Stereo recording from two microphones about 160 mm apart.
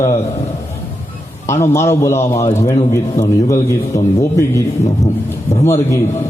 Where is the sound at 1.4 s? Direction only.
15° left (ahead or behind).